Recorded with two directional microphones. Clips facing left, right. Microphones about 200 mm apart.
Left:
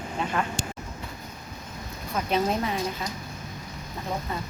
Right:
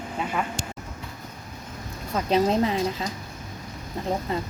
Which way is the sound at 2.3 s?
30° right (ahead or behind).